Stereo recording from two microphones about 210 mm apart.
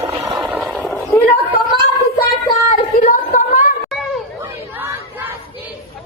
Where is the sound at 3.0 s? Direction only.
35° left (ahead or behind).